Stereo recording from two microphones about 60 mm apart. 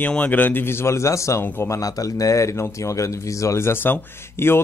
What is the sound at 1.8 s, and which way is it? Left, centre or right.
Speech, left.